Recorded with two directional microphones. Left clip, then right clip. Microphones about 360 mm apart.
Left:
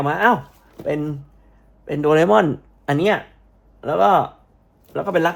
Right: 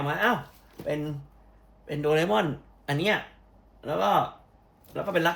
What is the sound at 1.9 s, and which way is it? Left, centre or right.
Speech, left.